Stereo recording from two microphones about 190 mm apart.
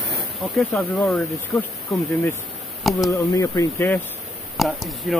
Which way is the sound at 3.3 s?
15° left (ahead or behind).